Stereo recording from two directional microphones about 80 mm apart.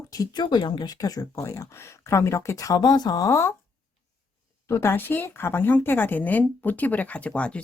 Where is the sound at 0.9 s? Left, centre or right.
Left.